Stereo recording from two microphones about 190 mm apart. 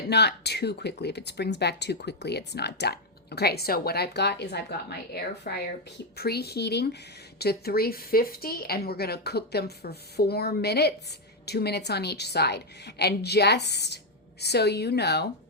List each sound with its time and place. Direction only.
0.1 s speech: 60° left (ahead or behind)